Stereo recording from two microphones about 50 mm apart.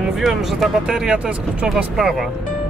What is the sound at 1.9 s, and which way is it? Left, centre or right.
Speech, centre.